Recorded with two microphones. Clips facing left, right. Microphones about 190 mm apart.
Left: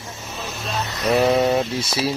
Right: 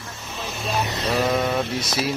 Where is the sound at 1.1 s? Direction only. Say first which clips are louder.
Left 6 dB; 30° left (ahead or behind).